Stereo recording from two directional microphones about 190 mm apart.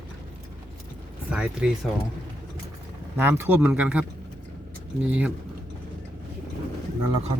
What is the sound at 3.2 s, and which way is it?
Speech, 10° right (ahead or behind).